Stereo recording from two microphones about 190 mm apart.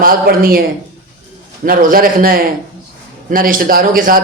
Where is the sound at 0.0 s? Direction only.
50° right (ahead or behind).